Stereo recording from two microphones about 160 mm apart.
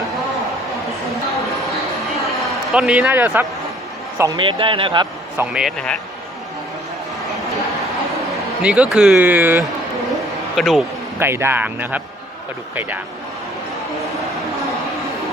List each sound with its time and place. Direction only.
2.7 s a man's voice: 5° right (ahead or behind); by 4.4 s 20° right (ahead or behind)
4.4 s speech: 30° right (ahead or behind)
5.4 s a man's voice: 5° right (ahead or behind)
5.7 s a man's voice: 5° left (ahead or behind)
8.6 s speech: 10° right (ahead or behind)
10.5 s a man's voice: centre (ahead or behind)
11.2 s speech: 15° right (ahead or behind)